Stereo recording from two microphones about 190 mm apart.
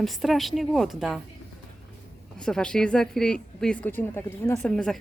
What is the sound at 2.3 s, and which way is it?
Speech, 5° left (ahead or behind).